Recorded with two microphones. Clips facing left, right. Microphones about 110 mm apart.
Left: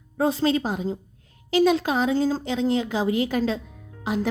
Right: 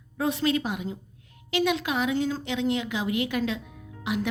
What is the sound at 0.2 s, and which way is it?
A woman's voice, 30° left (ahead or behind).